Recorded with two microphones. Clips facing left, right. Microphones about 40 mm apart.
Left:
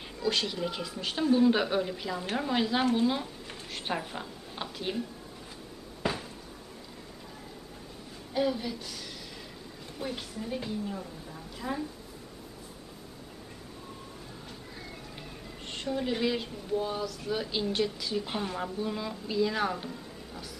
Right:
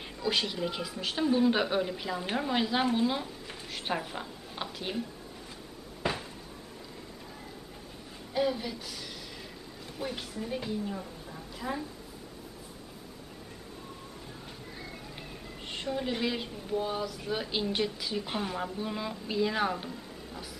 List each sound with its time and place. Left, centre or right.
0.2 s a woman's voice: centre
8.3 s a woman's voice: centre
15.1 s a woman's voice: centre